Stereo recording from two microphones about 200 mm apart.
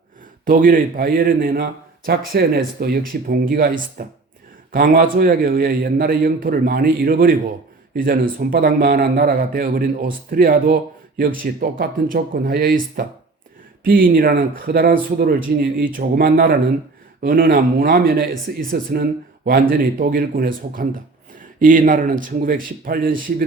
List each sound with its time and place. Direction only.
0.4 s a man's voice: 45° right (ahead or behind)